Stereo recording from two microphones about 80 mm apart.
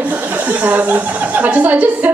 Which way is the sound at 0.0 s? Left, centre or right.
Centre.